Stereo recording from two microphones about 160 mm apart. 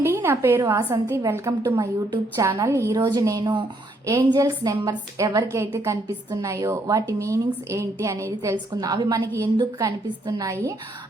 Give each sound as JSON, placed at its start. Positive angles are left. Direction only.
{"t": 0.0, "sound": "a woman's voice", "side_deg": -15}